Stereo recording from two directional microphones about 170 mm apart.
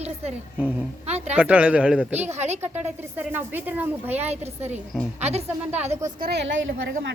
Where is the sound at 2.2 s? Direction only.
40° right (ahead or behind).